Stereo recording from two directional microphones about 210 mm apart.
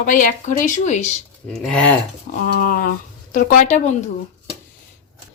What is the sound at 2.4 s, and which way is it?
Speech, 45° left (ahead or behind).